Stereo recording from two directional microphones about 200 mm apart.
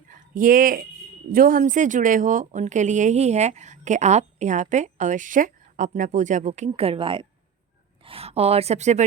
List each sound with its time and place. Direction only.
0.1 s speech: 45° right (ahead or behind)